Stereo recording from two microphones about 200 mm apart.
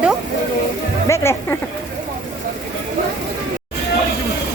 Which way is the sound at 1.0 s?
15° left (ahead or behind).